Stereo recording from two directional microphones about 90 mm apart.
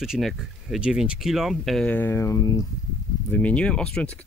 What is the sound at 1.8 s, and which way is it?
Speech, 15° left (ahead or behind).